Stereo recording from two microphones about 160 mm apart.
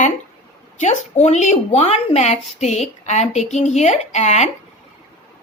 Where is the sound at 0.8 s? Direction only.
45° left (ahead or behind).